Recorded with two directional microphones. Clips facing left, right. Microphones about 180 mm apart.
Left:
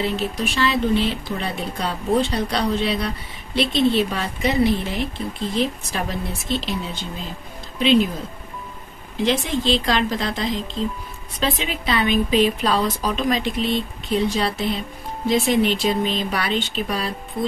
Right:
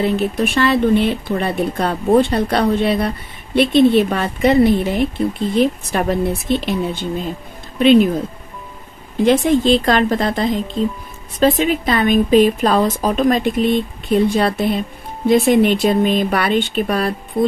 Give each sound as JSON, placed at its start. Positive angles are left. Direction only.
{"t": 0.0, "sound": "speech", "side_deg": -55}
{"t": 9.2, "sound": "a woman's voice", "side_deg": -50}